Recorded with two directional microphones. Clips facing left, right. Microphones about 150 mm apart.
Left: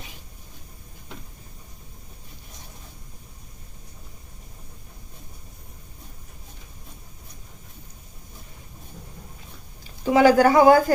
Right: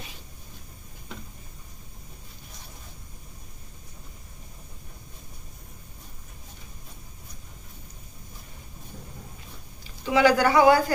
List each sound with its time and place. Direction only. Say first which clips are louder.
10.0 s speech: left 4 dB; 45° left (ahead or behind)